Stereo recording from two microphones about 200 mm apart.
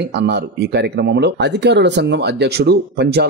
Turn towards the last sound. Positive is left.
turn(degrees=-55)  # may be behind; listen again after turning